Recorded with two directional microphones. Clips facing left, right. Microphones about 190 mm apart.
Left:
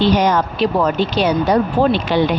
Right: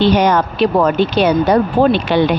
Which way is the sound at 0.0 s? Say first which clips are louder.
Right 2 dB; 60° right (ahead or behind).